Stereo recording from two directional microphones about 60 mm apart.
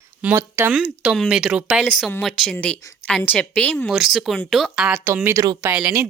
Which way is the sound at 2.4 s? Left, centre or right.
Centre.